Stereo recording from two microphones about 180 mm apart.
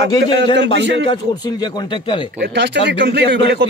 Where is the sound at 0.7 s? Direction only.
75° right (ahead or behind).